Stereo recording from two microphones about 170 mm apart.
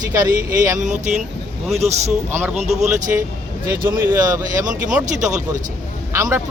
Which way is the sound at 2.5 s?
40° right (ahead or behind).